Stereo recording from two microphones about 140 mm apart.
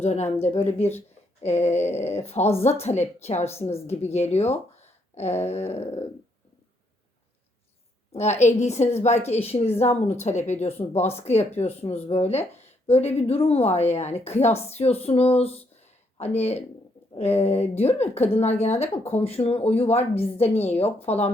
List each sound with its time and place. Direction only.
0.0 s speech: 50° left (ahead or behind)
0.8 s speech: 15° left (ahead or behind)
1.4 s speech: 50° left (ahead or behind)
1.8 s speech: 15° left (ahead or behind)
2.6 s speech: 50° left (ahead or behind)
8.1 s speech: 55° left (ahead or behind)